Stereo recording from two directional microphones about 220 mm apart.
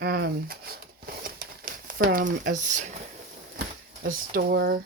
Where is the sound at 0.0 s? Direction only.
45° right (ahead or behind).